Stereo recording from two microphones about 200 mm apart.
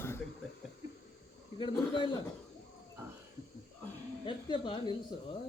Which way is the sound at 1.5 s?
25° left (ahead or behind).